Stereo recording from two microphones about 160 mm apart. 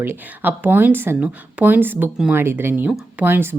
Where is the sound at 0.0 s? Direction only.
10° right (ahead or behind).